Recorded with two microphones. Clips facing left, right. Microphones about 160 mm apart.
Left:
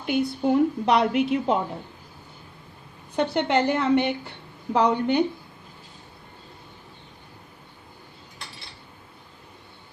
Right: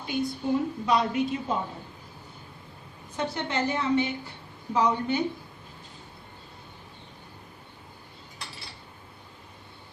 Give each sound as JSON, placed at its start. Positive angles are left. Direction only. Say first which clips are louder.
{"t": 0.0, "sound": "a woman's voice", "louder": "left 6 dB", "side_deg": 65}
{"t": 3.2, "sound": "a woman's voice", "louder": "left 7 dB", "side_deg": 65}